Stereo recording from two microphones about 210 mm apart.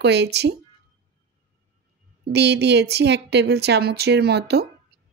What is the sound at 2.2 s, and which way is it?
Speech, 50° right (ahead or behind).